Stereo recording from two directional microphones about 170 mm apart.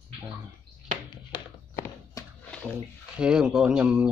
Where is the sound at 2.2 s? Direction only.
20° left (ahead or behind).